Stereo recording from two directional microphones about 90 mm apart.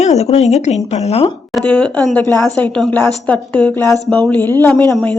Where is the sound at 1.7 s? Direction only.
15° left (ahead or behind).